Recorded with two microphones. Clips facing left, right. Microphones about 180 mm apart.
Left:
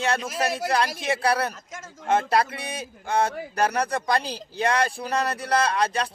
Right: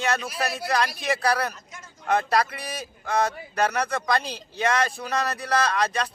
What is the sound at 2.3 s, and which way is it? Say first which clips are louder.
A man's voice: left 1 dB; 30° left (ahead or behind).